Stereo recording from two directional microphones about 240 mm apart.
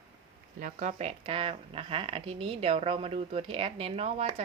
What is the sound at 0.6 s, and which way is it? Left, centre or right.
Speech, right.